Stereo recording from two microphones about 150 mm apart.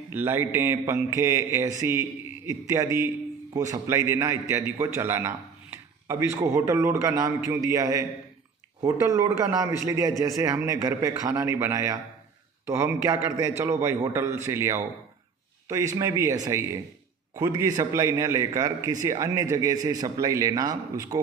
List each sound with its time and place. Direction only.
0.1 s a man's voice: 15° right (ahead or behind)
9.0 s a man's voice: 20° right (ahead or behind)